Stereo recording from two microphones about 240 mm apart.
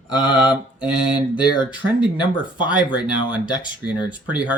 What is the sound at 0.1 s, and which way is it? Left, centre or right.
Mantra, centre.